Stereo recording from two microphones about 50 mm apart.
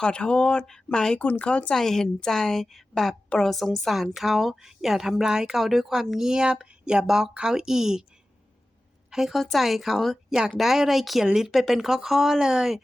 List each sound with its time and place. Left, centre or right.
0.0 s speech: centre
1.2 s speech: left
1.5 s speech: left
1.8 s a woman's voice: centre
9.0 s a woman's voice: centre
10.2 s a woman's voice: centre